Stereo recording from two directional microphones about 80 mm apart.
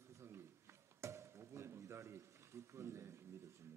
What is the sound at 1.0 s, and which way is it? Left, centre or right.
Speech, right.